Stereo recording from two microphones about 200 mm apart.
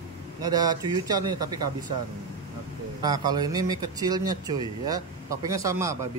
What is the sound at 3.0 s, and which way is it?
Speech, 20° right (ahead or behind).